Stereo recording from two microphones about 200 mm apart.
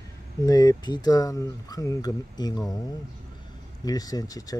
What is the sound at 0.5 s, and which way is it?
Speech, 20° left (ahead or behind).